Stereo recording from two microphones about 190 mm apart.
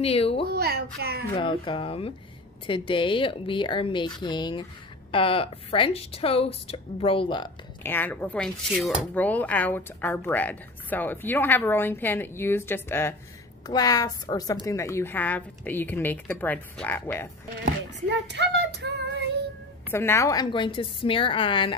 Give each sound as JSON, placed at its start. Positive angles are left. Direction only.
{"t": 0.0, "sound": "a woman's voice", "side_deg": 30}
{"t": 0.5, "sound": "female singing", "side_deg": -55}
{"t": 1.3, "sound": "speech", "side_deg": 25}
{"t": 7.8, "sound": "a woman's voice", "side_deg": 10}
{"t": 8.7, "sound": "speech", "side_deg": -5}
{"t": 9.1, "sound": "a woman's voice", "side_deg": 10}
{"t": 18.2, "sound": "female singing", "side_deg": -60}
{"t": 19.9, "sound": "speech", "side_deg": 10}